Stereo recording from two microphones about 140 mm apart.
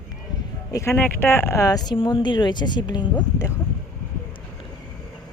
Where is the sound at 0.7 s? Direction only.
20° left (ahead or behind).